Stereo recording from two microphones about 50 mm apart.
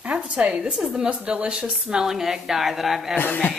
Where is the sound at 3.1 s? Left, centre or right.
Left.